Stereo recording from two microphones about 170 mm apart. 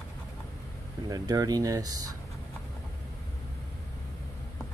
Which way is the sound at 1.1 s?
20° right (ahead or behind).